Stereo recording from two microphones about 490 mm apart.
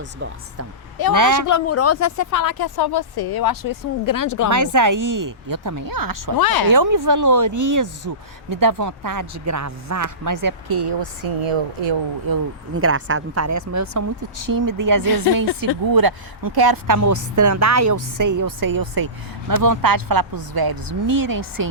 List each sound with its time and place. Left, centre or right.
1.1 s a woman's voice: right
1.5 s speech: left
4.4 s a woman's voice: right
6.3 s speech: left
6.7 s a woman's voice: right
12.3 s speech: right
12.7 s a woman's voice: right